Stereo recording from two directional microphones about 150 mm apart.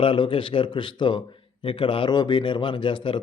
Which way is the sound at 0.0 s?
35° left (ahead or behind).